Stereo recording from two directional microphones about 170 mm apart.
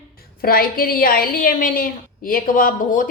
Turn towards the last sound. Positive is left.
turn(degrees=50)  # may be behind; listen again after turning